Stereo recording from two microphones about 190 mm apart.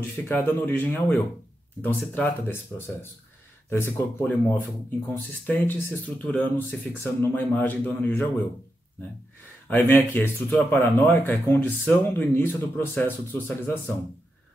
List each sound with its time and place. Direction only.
0.3 s speech: 10° left (ahead or behind)
3.7 s speech: 10° left (ahead or behind)
9.7 s speech: 10° left (ahead or behind)